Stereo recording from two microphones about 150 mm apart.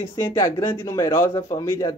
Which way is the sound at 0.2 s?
20° left (ahead or behind).